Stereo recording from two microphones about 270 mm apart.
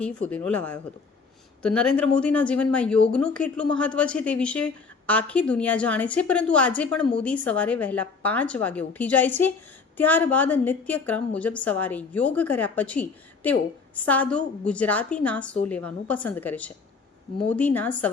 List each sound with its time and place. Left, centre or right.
0.0 s speech: centre